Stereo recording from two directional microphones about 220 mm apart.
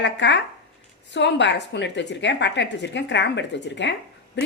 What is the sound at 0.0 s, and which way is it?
A woman's voice, 55° left (ahead or behind).